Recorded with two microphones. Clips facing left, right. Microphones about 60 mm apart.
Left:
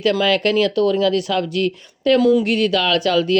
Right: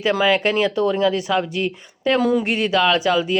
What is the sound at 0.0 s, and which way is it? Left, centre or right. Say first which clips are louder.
Speech: left 1 dB; right.